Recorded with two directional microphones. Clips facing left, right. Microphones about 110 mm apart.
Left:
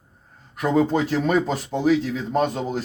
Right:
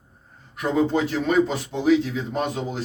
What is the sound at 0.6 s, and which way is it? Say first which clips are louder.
Speech: left 1 dB; 45° left (ahead or behind).